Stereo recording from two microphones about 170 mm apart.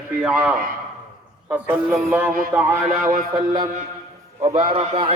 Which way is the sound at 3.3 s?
25° right (ahead or behind).